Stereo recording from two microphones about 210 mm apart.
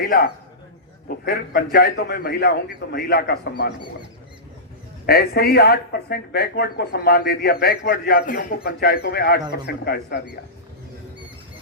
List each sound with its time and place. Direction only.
0.0 s speech: 45° left (ahead or behind)
5.0 s speech: 50° left (ahead or behind)